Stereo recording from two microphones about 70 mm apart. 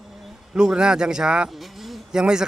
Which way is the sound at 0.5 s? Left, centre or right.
Centre.